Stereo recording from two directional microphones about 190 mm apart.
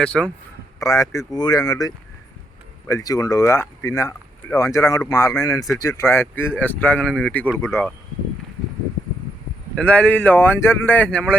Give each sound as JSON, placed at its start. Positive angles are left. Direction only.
{"t": 0.0, "sound": "speech", "side_deg": 5}
{"t": 0.8, "sound": "speech", "side_deg": 15}
{"t": 9.7, "sound": "speech", "side_deg": 5}